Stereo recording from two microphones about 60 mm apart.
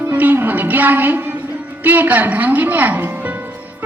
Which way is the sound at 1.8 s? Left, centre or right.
Right.